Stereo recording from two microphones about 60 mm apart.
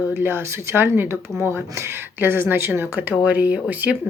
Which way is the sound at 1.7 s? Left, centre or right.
Right.